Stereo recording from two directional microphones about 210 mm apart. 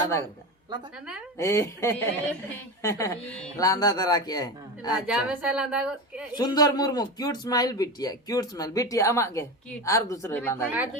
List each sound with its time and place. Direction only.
1.4 s a man's voice: 15° left (ahead or behind)
5.0 s a woman's voice: 5° right (ahead or behind)
6.3 s a man's voice: 20° left (ahead or behind)